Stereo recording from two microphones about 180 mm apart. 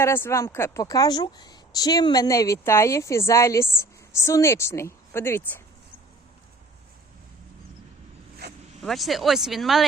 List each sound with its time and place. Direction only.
0.0 s speech: 15° left (ahead or behind)
8.8 s speech: centre (ahead or behind)